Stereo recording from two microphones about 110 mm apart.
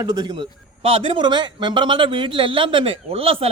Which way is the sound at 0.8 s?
60° right (ahead or behind).